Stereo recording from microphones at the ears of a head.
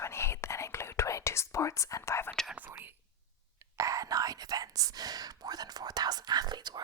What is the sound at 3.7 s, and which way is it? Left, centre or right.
Whispering, right.